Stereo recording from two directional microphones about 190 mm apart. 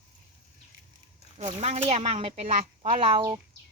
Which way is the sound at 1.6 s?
35° right (ahead or behind).